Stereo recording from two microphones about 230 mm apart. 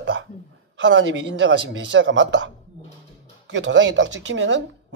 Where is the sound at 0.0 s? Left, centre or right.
Right.